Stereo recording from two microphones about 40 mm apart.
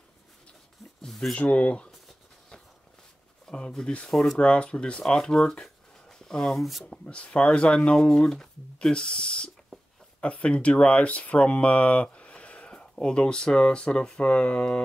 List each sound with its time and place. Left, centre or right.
1.0 s a sound: centre
1.3 s speech: left
3.4 s speech: centre
4.1 s speech: centre
4.4 s speech: left
5.0 s a sound: centre
6.5 s speech: centre
7.1 s speech: left
8.1 s speech: centre
9.7 s a sound: centre
10.2 s speech: left